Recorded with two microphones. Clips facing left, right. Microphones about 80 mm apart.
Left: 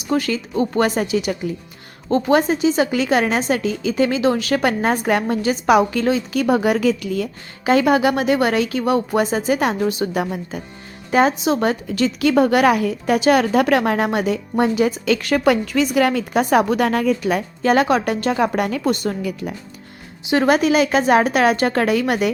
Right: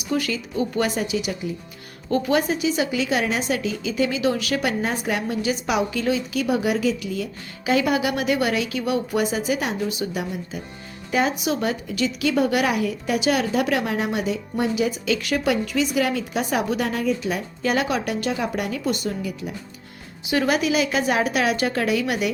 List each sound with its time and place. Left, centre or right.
0.1 s a woman's voice: left
2.0 s a woman's voice: left
11.3 s a woman's voice: left
11.6 s a woman's voice: left
16.8 s speech: left
17.7 s a woman's voice: left
20.3 s a woman's voice: left